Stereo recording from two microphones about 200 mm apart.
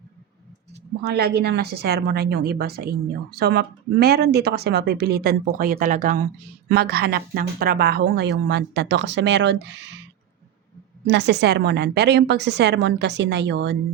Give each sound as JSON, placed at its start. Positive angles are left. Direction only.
{"t": 1.0, "sound": "a woman's voice", "side_deg": -55}
{"t": 6.7, "sound": "a woman's voice", "side_deg": -50}
{"t": 11.0, "sound": "a woman's voice", "side_deg": -60}